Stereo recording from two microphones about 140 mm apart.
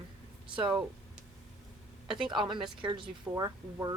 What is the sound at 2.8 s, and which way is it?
Speech, 35° right (ahead or behind).